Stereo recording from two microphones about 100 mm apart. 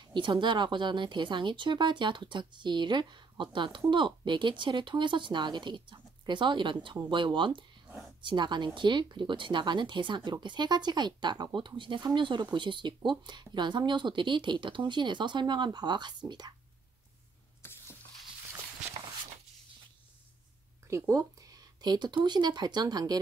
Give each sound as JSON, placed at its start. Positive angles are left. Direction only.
{"t": 0.1, "sound": "speech", "side_deg": -50}
{"t": 17.6, "sound": "a sound", "side_deg": 25}
{"t": 20.9, "sound": "speech", "side_deg": -35}